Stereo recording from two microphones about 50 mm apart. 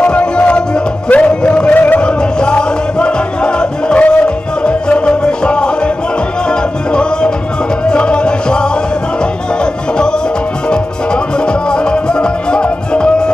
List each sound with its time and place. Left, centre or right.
0.0 s music: centre
1.7 s music: left
2.0 s music: centre